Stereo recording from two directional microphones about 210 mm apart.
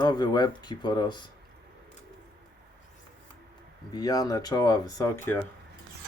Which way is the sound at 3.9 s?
15° left (ahead or behind).